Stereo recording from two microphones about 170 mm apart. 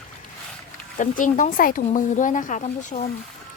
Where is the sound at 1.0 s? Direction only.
50° left (ahead or behind).